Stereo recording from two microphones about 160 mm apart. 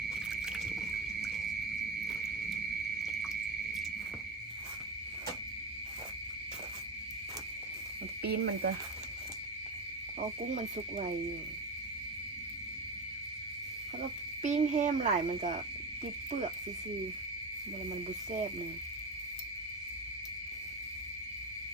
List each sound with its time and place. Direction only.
0.4 s rowboat: 5° right (ahead or behind)
3.1 s insect: centre (ahead or behind)
8.2 s speech: 80° right
10.5 s speech: 45° right (ahead or behind)
14.4 s speech: 50° right (ahead or behind)